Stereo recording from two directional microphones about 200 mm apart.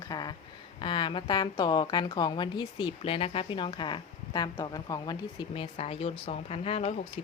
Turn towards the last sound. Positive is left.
turn(degrees=30)  # may be behind; listen again after turning